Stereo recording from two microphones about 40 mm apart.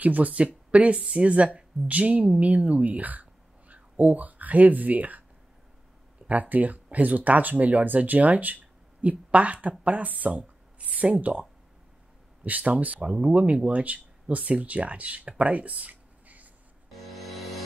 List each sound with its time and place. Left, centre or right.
0.0 s speech: right
0.3 s speech: right
6.2 s speech: right
12.4 s speech: right
17.1 s music: centre